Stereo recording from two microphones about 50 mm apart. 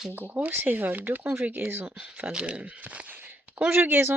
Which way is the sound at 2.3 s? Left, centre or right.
Right.